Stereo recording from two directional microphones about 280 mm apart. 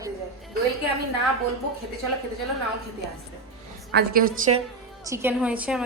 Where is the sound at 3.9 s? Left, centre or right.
Right.